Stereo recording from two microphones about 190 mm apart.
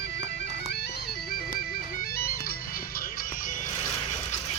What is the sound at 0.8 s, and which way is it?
Music, 55° left (ahead or behind).